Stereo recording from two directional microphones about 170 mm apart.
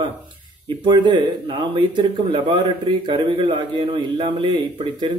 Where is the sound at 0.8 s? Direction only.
25° right (ahead or behind).